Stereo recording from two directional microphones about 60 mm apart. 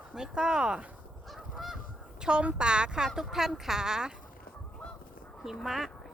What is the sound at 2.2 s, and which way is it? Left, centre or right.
Speech, centre.